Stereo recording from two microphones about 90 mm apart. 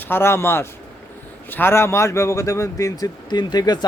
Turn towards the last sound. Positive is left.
turn(degrees=50)  # may be behind; listen again after turning